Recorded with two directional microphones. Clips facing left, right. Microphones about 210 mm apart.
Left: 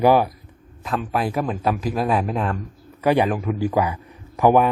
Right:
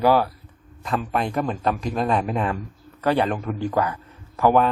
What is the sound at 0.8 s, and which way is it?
Speech, centre (ahead or behind).